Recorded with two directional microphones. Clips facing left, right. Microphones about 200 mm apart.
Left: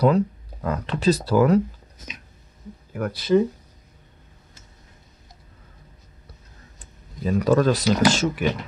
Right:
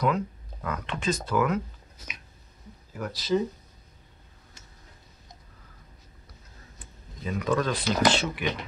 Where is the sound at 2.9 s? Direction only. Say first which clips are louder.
Left 6 dB; 60° left (ahead or behind).